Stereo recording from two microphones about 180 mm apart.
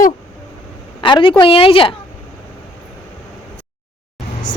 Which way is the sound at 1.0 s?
25° left (ahead or behind).